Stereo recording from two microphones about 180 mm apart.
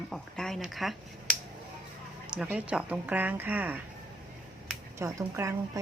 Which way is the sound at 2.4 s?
5° right (ahead or behind).